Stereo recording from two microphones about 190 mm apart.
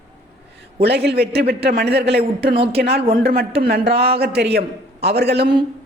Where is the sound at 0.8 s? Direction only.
60° right (ahead or behind).